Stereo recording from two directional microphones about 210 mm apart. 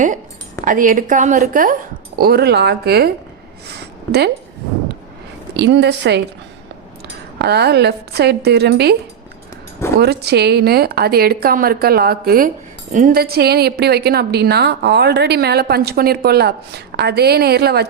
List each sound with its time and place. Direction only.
0.6 s a woman's voice: 40° right (ahead or behind)
2.1 s a woman's voice: 50° right (ahead or behind)
3.7 s a sound: 50° right (ahead or behind)
5.5 s a woman's voice: 55° right (ahead or behind)
7.3 s a woman's voice: 50° right (ahead or behind)
10.0 s a woman's voice: 50° right (ahead or behind)